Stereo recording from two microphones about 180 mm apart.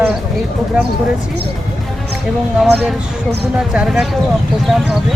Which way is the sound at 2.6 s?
5° right (ahead or behind).